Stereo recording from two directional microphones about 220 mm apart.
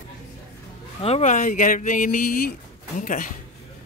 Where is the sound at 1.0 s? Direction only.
30° left (ahead or behind).